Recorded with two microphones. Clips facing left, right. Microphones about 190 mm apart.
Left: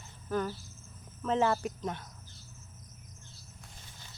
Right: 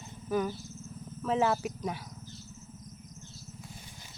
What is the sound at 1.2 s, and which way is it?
Speech, 5° right (ahead or behind).